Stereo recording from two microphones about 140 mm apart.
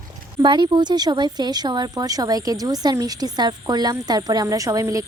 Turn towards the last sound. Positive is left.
turn(degrees=-25)  # may be behind; listen again after turning